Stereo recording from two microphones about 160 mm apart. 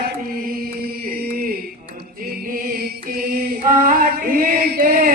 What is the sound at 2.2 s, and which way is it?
Music, 65° right (ahead or behind).